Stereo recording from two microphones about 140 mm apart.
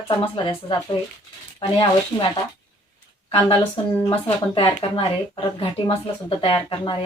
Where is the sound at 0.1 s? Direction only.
35° left (ahead or behind).